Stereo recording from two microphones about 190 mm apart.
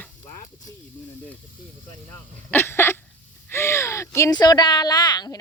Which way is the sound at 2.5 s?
10° left (ahead or behind).